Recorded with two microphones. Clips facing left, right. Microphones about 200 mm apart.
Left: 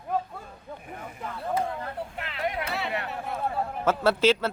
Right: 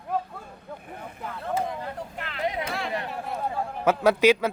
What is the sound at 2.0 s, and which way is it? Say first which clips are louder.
Vehicle: left 1 dB; centre (ahead or behind).